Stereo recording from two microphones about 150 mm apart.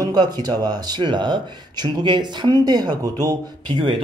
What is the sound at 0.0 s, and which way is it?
A man's voice, 25° right (ahead or behind).